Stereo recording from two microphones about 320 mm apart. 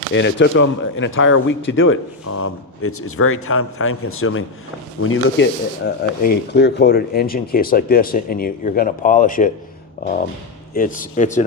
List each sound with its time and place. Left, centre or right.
0.1 s speech: left
10.8 s speech: left